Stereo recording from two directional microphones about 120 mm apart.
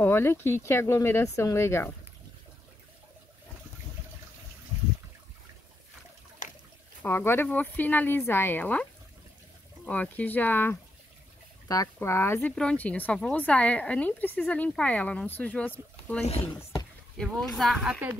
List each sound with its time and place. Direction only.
0.0 s speech: 20° left (ahead or behind)
6.4 s a sound: 90° left
7.0 s speech: 20° left (ahead or behind)
9.8 s speech: 15° left (ahead or behind)
11.6 s speech: 30° left (ahead or behind); by 16.3 s 10° left (ahead or behind)
17.6 s a woman's voice: centre (ahead or behind)